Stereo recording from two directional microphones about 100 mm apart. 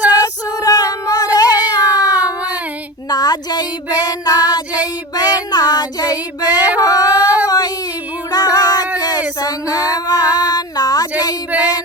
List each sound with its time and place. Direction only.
0.1 s cat: 40° left (ahead or behind)
2.0 s a sound: 40° left (ahead or behind)
3.1 s female singing: 40° left (ahead or behind)
6.9 s a sound: 40° left (ahead or behind)
7.4 s child singing: 40° left (ahead or behind)
8.3 s music: 40° left (ahead or behind)
9.0 s female singing: 40° left (ahead or behind)
11.5 s female singing: 15° right (ahead or behind)